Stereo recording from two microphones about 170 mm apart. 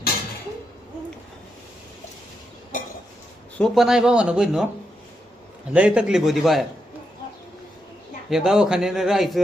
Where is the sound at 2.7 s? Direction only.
50° left (ahead or behind).